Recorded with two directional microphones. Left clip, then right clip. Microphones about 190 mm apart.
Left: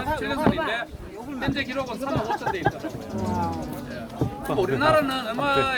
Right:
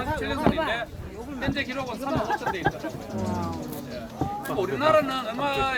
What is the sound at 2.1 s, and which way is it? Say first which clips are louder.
Speech: even; 30° right (ahead or behind).